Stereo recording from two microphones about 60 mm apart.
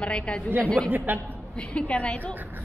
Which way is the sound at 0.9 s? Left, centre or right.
Right.